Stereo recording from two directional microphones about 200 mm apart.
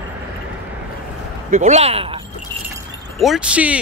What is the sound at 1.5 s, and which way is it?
Speech, 35° right (ahead or behind).